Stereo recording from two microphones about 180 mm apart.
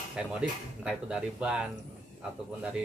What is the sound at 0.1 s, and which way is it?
Speech, 5° right (ahead or behind).